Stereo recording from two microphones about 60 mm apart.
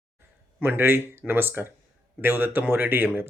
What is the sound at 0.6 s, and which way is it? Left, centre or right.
Speech, right.